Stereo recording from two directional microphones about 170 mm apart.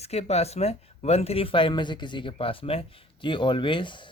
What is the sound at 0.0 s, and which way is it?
Speech, 40° left (ahead or behind).